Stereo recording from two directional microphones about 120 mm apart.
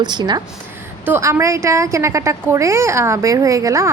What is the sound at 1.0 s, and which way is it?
A woman's voice, 20° right (ahead or behind).